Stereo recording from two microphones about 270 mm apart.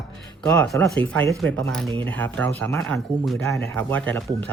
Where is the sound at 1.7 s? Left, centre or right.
Centre.